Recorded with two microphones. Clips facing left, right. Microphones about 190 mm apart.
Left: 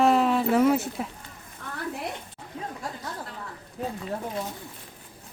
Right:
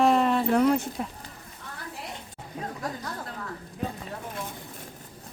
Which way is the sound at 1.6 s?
55° left (ahead or behind).